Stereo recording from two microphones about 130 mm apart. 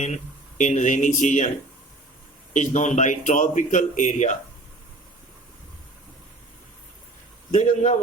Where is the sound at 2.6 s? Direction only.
65° left (ahead or behind).